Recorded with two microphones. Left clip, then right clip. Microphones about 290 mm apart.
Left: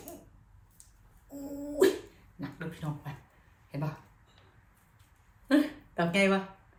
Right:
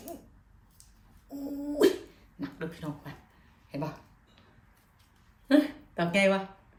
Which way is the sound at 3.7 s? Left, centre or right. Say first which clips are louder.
Right 3 dB; centre.